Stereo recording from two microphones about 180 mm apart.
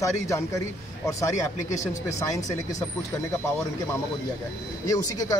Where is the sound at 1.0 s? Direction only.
15° left (ahead or behind).